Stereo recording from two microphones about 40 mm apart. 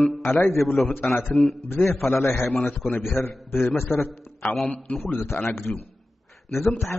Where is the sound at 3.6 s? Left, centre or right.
Left.